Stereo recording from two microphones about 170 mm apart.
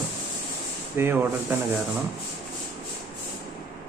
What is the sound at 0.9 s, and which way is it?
Speech, 10° right (ahead or behind).